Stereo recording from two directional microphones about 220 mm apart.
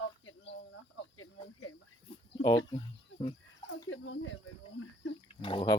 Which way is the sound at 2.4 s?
15° left (ahead or behind).